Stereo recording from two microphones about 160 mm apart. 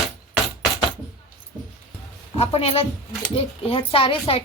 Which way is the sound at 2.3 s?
40° left (ahead or behind).